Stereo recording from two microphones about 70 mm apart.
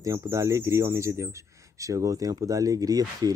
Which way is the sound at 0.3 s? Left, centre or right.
Right.